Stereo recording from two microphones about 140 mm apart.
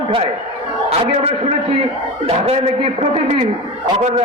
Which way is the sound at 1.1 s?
50° right (ahead or behind).